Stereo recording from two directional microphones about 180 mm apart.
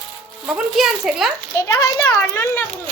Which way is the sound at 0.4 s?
5° right (ahead or behind).